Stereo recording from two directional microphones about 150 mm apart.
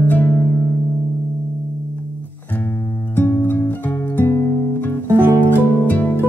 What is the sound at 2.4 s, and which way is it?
Music, 15° left (ahead or behind).